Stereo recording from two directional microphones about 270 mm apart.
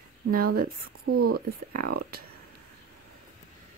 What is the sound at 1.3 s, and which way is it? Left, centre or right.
Speech, right.